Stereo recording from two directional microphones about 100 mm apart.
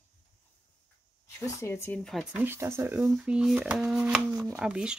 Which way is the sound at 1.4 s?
30° left (ahead or behind).